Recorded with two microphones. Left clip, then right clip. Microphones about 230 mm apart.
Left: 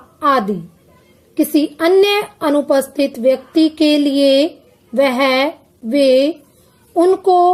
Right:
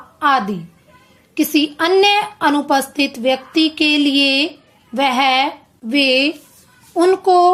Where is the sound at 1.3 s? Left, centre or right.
Centre.